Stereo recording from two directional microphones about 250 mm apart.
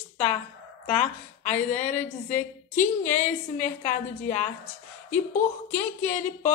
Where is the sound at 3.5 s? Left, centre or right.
Left.